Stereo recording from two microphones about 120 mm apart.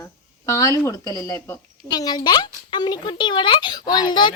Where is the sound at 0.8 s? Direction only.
30° left (ahead or behind).